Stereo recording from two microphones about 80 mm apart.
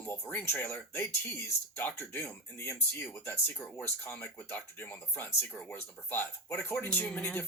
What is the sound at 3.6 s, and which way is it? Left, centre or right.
Speech, left.